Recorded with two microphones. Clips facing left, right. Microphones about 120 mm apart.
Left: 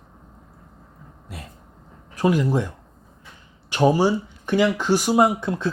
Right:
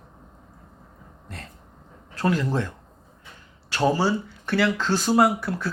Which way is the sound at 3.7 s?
15° left (ahead or behind).